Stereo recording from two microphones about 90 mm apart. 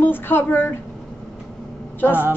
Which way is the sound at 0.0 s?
25° left (ahead or behind).